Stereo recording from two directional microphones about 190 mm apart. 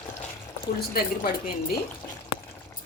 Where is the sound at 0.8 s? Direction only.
50° left (ahead or behind).